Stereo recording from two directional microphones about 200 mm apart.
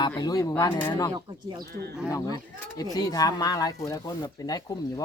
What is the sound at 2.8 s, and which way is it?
Speech, 20° left (ahead or behind).